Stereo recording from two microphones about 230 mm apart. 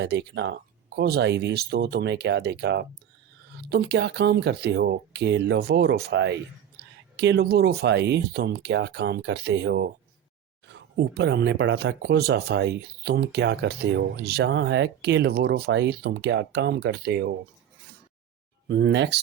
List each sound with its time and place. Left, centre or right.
0.0 s speech: right
18.7 s speech: right